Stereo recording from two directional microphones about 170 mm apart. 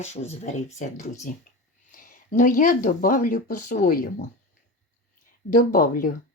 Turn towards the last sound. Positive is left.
turn(degrees=55)  # may be behind; listen again after turning